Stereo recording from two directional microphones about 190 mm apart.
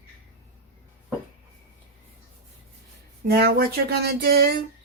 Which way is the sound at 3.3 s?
55° right (ahead or behind).